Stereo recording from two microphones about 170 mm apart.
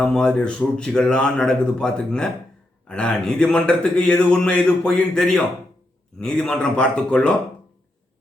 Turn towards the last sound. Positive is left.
turn(degrees=5)  # may be behind; listen again after turning